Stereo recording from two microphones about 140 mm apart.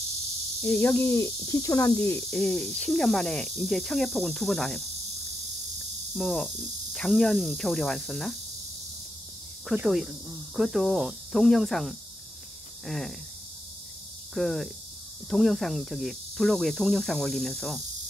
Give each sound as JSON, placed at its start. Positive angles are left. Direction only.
{"t": 0.6, "sound": "speech", "side_deg": 10}
{"t": 6.1, "sound": "speech", "side_deg": 0}
{"t": 9.8, "sound": "speech", "side_deg": 0}
{"t": 14.3, "sound": "speech", "side_deg": 0}